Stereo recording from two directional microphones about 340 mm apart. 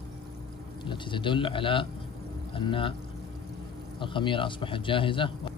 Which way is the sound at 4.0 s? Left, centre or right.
Centre.